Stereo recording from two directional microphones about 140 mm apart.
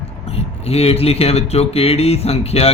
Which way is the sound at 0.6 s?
45° left (ahead or behind).